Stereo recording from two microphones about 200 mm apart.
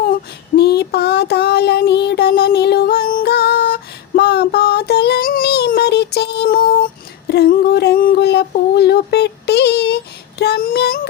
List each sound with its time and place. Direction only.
0.5 s child singing: 55° left (ahead or behind)